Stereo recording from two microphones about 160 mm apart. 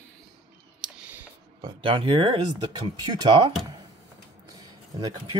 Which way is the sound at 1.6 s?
30° right (ahead or behind).